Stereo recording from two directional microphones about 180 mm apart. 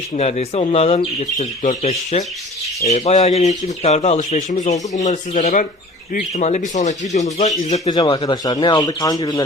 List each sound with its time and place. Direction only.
0.1 s speech: 35° left (ahead or behind)
7.6 s speech: 20° left (ahead or behind)